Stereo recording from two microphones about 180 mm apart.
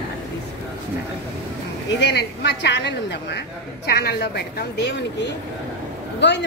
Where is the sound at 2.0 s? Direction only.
70° left (ahead or behind).